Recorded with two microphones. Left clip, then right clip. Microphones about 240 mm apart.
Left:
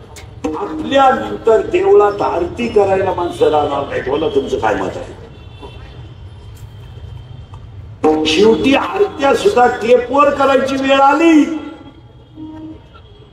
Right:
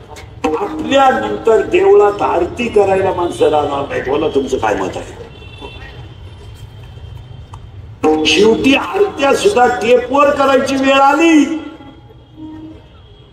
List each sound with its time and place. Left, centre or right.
0.4 s a man's voice: right
8.0 s a man's voice: right